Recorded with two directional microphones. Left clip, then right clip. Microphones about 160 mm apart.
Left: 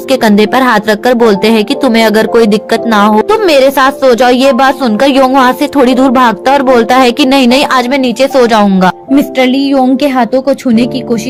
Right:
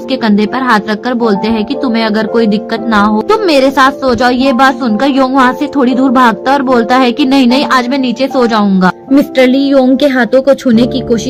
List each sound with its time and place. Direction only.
0.1 s a woman's voice: 40° left (ahead or behind)
9.1 s a woman's voice: 15° left (ahead or behind)